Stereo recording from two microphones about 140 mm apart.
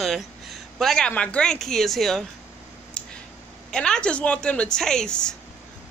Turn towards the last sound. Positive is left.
turn(degrees=5)  # may be behind; listen again after turning